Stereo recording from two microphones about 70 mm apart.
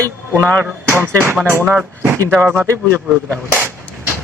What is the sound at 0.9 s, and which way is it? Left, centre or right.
Speech, right.